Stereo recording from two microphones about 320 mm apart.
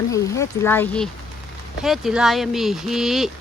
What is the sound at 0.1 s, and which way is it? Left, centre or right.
Speech, centre.